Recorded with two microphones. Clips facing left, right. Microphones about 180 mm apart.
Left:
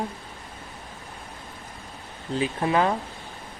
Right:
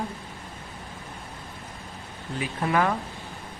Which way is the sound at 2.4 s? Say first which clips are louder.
Left 2 dB; 25° left (ahead or behind).